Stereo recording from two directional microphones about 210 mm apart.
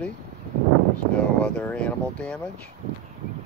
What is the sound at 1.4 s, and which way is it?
Speech, 5° left (ahead or behind).